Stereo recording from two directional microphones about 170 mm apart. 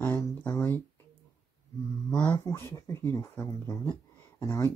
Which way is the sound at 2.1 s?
5° left (ahead or behind).